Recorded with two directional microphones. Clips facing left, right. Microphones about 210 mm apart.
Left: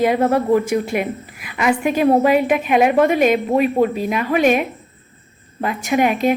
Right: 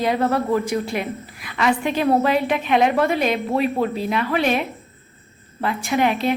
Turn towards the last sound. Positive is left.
turn(degrees=15)  # may be behind; listen again after turning